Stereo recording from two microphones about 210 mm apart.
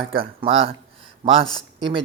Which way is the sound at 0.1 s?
25° right (ahead or behind).